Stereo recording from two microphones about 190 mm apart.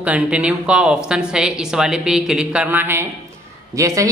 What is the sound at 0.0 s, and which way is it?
A woman's voice, 5° right (ahead or behind).